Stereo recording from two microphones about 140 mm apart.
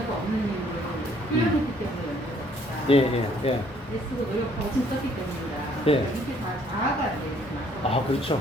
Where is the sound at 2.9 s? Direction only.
40° left (ahead or behind).